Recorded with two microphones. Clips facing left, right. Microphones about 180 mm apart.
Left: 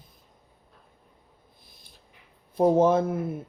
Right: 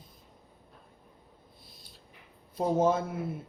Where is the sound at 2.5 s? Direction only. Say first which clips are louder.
Left 6 dB; 60° left (ahead or behind).